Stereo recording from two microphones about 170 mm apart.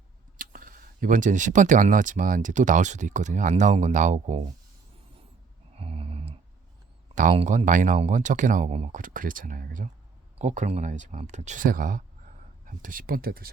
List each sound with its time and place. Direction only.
0.3 s speech: 55° right (ahead or behind)
5.7 s a sound: 35° right (ahead or behind)
7.2 s speech: 45° right (ahead or behind)